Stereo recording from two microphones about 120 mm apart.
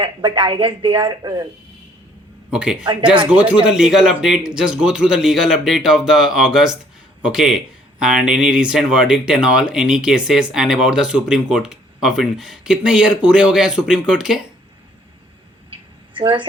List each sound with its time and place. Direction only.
0.0 s speech: 40° right (ahead or behind)
2.5 s a man's voice: 5° right (ahead or behind)
2.8 s a woman's voice: 45° right (ahead or behind)
3.2 s a man's voice: 10° right (ahead or behind)
16.1 s a woman's voice: 45° right (ahead or behind)